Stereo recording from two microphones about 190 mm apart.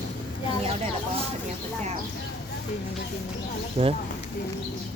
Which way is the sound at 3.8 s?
35° right (ahead or behind).